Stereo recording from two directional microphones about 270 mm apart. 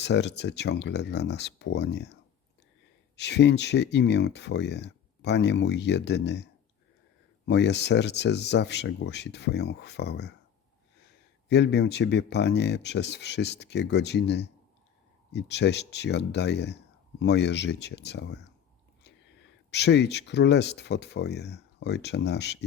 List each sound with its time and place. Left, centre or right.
0.0 s speech: left
3.2 s speech: left
11.4 s speech: left
19.7 s speech: left